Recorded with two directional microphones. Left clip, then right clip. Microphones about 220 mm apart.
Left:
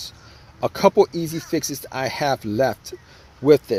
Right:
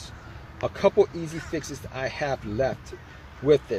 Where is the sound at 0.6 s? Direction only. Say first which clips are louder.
Left 5 dB; 40° left (ahead or behind).